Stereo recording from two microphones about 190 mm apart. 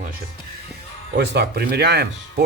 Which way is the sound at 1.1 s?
60° right (ahead or behind).